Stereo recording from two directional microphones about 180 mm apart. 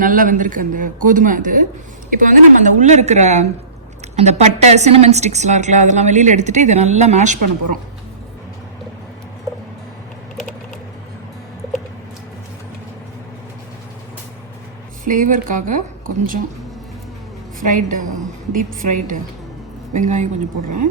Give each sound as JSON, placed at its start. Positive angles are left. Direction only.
{"t": 0.0, "sound": "a woman's voice", "side_deg": -50}
{"t": 15.0, "sound": "speech", "side_deg": -45}
{"t": 17.6, "sound": "speech", "side_deg": -45}